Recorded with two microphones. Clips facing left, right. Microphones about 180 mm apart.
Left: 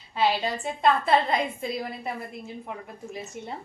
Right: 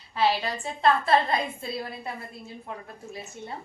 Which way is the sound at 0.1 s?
20° left (ahead or behind).